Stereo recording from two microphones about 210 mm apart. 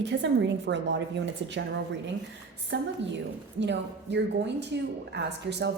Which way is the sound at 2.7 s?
60° right (ahead or behind).